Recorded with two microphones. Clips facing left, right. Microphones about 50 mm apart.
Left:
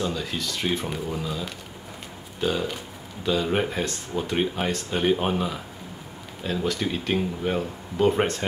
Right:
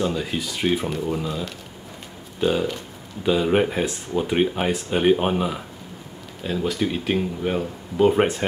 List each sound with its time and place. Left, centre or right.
0.0 s speech: centre
2.4 s speech: centre
6.4 s speech: centre